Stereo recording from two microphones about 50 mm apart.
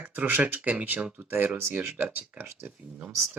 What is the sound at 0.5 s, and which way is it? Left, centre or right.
Speech, right.